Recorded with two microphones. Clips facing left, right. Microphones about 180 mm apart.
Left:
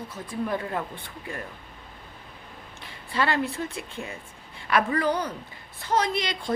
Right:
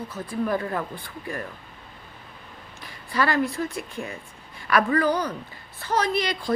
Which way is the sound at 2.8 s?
25° left (ahead or behind).